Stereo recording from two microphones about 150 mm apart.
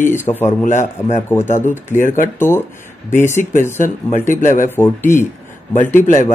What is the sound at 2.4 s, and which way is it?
Speech, 15° left (ahead or behind).